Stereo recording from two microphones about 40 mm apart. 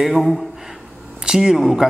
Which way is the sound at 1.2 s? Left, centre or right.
Centre.